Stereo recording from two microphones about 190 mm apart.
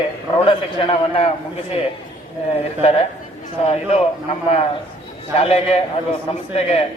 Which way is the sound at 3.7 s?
30° left (ahead or behind).